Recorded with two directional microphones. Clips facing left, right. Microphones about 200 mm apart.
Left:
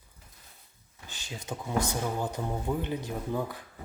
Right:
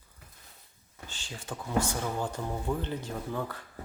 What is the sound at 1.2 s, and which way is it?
Speech, 20° left (ahead or behind).